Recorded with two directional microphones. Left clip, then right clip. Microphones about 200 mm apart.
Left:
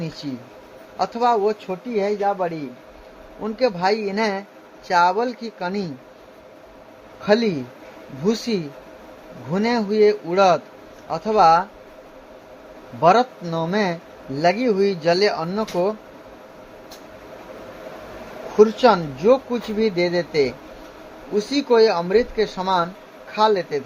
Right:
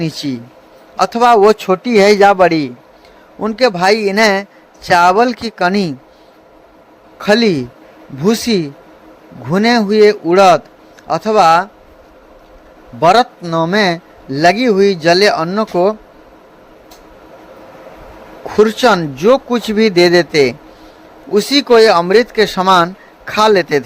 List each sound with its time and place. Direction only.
0.0 s a man's voice: 40° right (ahead or behind)
1.5 s speech: 60° right (ahead or behind)
3.4 s a man's voice: 35° right (ahead or behind)
7.2 s a man's voice: 35° right (ahead or behind)
13.0 s speech: 30° right (ahead or behind)
18.5 s a man's voice: 35° right (ahead or behind)